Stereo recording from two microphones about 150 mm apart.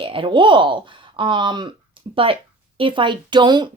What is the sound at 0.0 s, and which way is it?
Speech, 35° right (ahead or behind).